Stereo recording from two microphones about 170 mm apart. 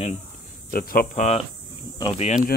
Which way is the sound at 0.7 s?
60° left (ahead or behind).